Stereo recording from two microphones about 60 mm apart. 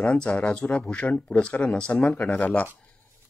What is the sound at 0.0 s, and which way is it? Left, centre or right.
Speech, centre.